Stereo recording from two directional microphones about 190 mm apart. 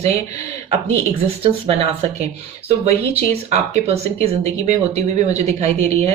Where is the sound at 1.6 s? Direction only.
35° right (ahead or behind).